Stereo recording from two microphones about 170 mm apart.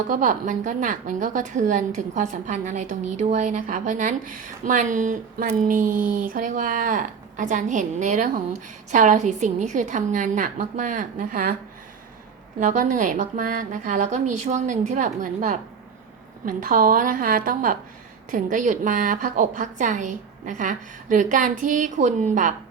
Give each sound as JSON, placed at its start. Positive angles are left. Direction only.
{"t": 0.1, "sound": "a woman's voice", "side_deg": -50}
{"t": 12.5, "sound": "a woman's voice", "side_deg": -50}